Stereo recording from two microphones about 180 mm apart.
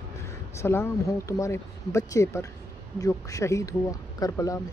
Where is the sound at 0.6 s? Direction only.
15° left (ahead or behind).